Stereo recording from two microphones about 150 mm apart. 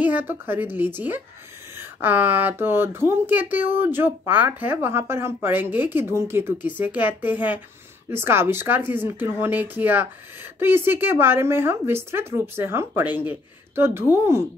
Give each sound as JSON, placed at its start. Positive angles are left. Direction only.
{"t": 0.0, "sound": "speech", "side_deg": -10}